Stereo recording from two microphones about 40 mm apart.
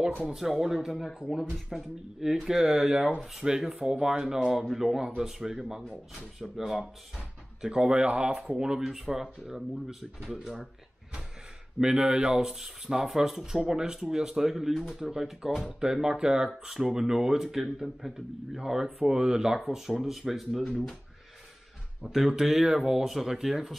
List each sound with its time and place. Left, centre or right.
0.2 s speech: centre
1.2 s speech: right
1.7 s speech: centre
7.2 s speech: right
8.9 s speech: centre
11.8 s speech: right
12.4 s speech: centre
14.7 s speech: centre
15.0 s speech: centre
19.0 s speech: centre
20.1 s speech: centre
22.0 s speech: centre